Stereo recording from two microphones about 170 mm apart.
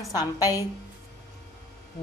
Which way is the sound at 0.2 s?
20° left (ahead or behind).